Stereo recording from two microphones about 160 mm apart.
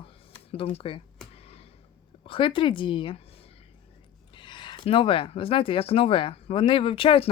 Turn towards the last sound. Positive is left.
turn(degrees=35)  # may be behind; listen again after turning